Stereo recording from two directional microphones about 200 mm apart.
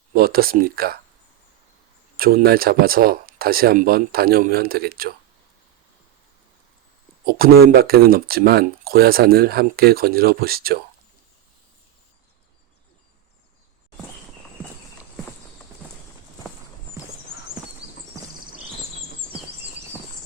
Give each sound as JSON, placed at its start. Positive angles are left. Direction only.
{"t": 0.1, "sound": "speech", "side_deg": -50}
{"t": 2.1, "sound": "speech", "side_deg": -45}
{"t": 7.3, "sound": "speech", "side_deg": -45}